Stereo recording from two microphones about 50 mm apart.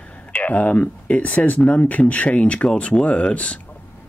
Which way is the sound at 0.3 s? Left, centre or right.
Left.